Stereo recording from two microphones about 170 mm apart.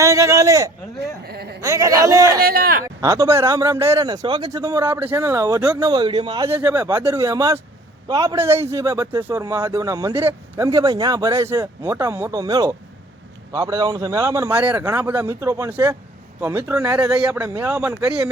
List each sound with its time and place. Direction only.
0.0 s a sound: 20° right (ahead or behind)
1.3 s speech: 70° right (ahead or behind)
1.6 s a man's voice: 20° right (ahead or behind)
2.4 s a man's voice: 60° right (ahead or behind)
2.8 s a man's voice: 20° right (ahead or behind)
5.9 s a man's voice: 25° right (ahead or behind)
6.5 s a man's voice: 15° right (ahead or behind)